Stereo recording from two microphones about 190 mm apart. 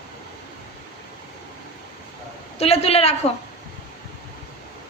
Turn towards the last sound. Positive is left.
turn(degrees=30)  # may be behind; listen again after turning